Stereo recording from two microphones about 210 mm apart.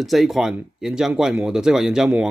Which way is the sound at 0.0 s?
Centre (ahead or behind).